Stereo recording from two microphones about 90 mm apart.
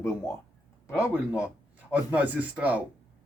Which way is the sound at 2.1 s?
15° right (ahead or behind).